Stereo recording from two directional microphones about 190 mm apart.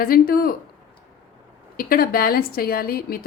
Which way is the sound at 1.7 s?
50° left (ahead or behind).